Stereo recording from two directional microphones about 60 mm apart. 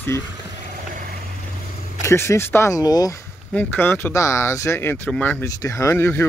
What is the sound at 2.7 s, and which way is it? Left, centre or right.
Speech, left.